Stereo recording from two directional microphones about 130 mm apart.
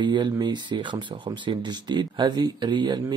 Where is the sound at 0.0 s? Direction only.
35° right (ahead or behind).